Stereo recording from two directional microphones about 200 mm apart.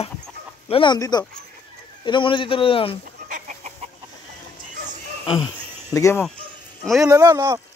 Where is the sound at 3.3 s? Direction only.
35° right (ahead or behind).